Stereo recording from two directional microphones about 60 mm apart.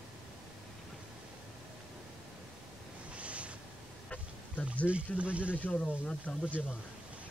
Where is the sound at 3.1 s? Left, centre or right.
Right.